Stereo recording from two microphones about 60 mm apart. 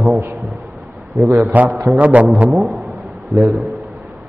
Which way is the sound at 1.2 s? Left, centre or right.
Right.